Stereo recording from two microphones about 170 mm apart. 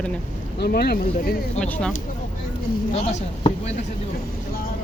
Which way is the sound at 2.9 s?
40° left (ahead or behind).